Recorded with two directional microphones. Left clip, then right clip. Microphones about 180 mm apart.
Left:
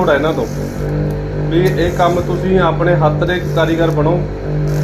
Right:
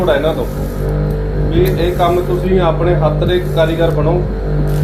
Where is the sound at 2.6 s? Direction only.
50° left (ahead or behind).